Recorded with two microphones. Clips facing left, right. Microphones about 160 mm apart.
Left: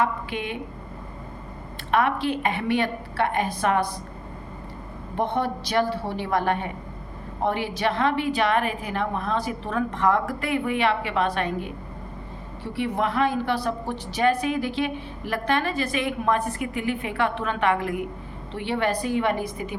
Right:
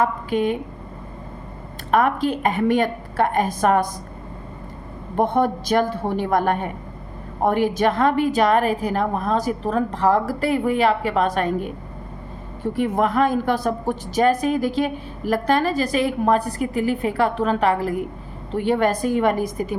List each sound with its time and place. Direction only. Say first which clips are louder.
0.0 s a woman's voice: right 6 dB; 40° right (ahead or behind)
1.9 s a woman's voice: right 4 dB; 40° right (ahead or behind)
5.1 s a woman's voice: right 6 dB; 45° right (ahead or behind)